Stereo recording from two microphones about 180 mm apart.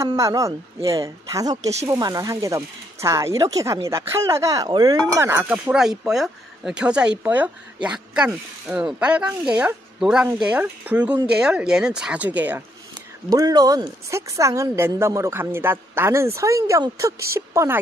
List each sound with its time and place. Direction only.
0.0 s speech: 20° right (ahead or behind)
13.3 s speech: 20° right (ahead or behind)